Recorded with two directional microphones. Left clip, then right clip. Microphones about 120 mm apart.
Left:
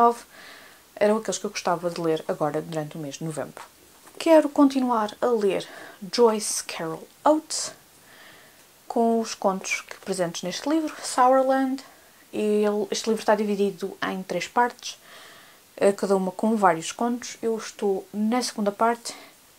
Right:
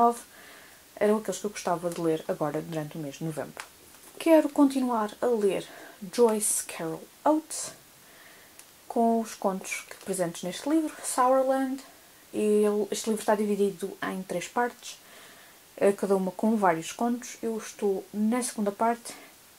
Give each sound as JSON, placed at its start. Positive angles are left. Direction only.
{"t": 0.9, "sound": "speech", "side_deg": 25}
{"t": 8.9, "sound": "speech", "side_deg": 25}
{"t": 15.8, "sound": "speech", "side_deg": 25}